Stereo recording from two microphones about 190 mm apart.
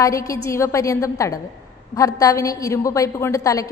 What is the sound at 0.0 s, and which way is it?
A woman's voice, 15° left (ahead or behind).